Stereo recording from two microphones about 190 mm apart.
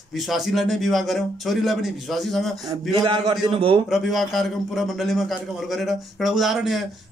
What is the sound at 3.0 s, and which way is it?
Speech, 25° right (ahead or behind).